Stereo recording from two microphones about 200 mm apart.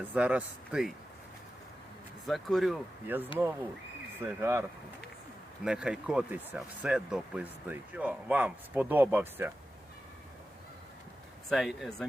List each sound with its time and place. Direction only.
0.0 s speech: 10° right (ahead or behind)
2.2 s speech: centre (ahead or behind)
5.6 s speech: 5° right (ahead or behind)
11.4 s speech: centre (ahead or behind)